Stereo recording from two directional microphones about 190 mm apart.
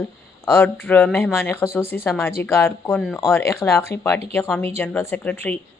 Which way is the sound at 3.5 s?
15° left (ahead or behind).